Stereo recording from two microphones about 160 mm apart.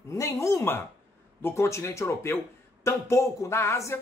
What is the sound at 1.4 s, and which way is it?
A man's voice, 15° left (ahead or behind).